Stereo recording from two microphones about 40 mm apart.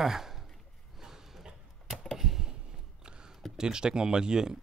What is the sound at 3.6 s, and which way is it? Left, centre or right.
Speech, centre.